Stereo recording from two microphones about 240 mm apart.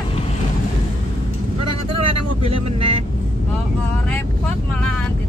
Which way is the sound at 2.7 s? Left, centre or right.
Right.